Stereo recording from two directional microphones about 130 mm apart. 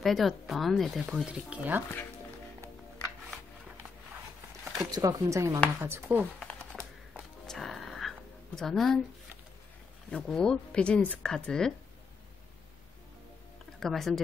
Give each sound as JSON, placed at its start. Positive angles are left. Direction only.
{"t": 0.0, "sound": "speech", "side_deg": 0}
{"t": 4.7, "sound": "speech", "side_deg": -25}
{"t": 5.8, "sound": "speech", "side_deg": -15}
{"t": 6.4, "sound": "typing", "side_deg": 5}
{"t": 7.4, "sound": "music", "side_deg": 0}
{"t": 8.5, "sound": "speech", "side_deg": 0}
{"t": 10.1, "sound": "speech", "side_deg": 5}
{"t": 13.7, "sound": "speech", "side_deg": 0}